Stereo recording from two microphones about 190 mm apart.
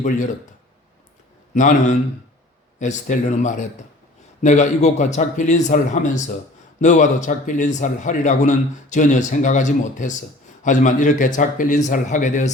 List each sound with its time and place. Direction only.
1.5 s a man's voice: 40° left (ahead or behind)